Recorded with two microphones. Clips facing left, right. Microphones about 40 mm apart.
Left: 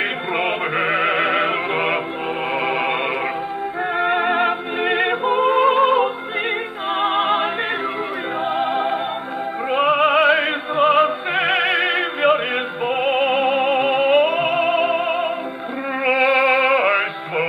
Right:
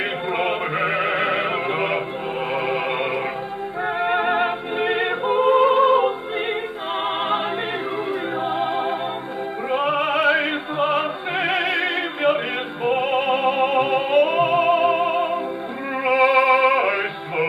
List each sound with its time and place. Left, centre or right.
0.4 s music: left
4.7 s music: left
5.2 s music: centre
9.7 s music: left
11.3 s opera: left
12.9 s music: left